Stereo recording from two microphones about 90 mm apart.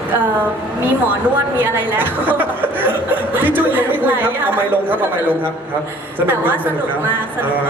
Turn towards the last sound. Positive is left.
turn(degrees=-20)  # may be behind; listen again after turning